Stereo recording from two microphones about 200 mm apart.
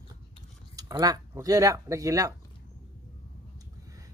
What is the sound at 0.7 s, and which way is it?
Speech, 20° right (ahead or behind).